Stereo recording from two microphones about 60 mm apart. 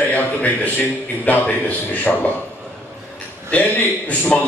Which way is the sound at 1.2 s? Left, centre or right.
Left.